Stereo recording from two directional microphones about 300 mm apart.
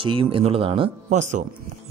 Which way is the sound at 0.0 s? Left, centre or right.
Centre.